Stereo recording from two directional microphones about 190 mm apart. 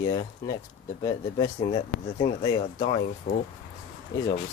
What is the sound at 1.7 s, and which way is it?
Speech, 35° left (ahead or behind).